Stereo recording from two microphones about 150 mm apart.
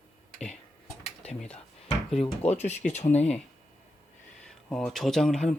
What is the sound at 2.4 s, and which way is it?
Speech, 45° left (ahead or behind).